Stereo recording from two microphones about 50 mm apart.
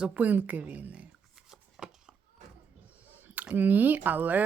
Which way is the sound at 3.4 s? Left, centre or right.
Right.